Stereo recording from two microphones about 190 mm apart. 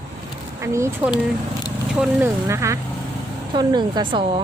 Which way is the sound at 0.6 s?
15° right (ahead or behind).